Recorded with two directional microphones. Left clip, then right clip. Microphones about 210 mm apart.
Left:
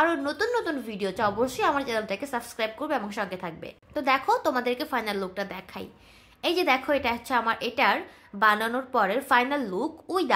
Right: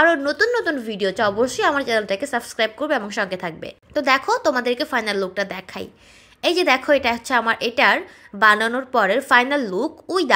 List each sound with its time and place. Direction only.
0.0 s a woman's voice: 10° right (ahead or behind)